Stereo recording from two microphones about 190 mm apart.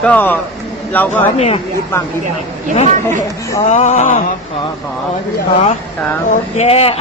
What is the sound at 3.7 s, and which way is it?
Speech, 35° left (ahead or behind).